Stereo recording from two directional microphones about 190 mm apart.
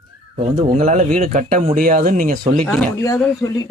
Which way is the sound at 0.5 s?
40° right (ahead or behind).